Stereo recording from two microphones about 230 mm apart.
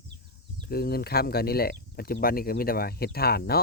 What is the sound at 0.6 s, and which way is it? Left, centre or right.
Speech, left.